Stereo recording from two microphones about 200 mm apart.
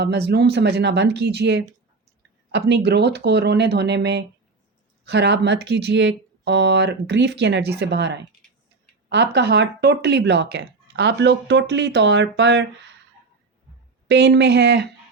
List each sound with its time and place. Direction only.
0.0 s speech: 55° right (ahead or behind)
14.1 s speech: 60° right (ahead or behind)